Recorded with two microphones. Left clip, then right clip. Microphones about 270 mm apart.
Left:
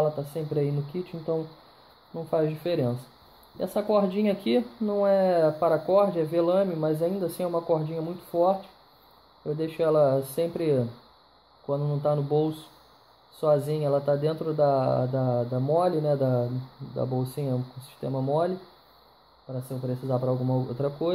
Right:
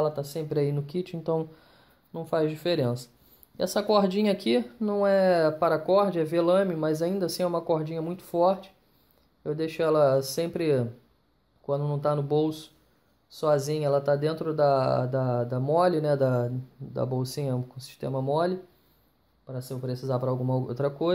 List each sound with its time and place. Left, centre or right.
0.0 s speech: right
9.6 s speech: right
19.9 s speech: right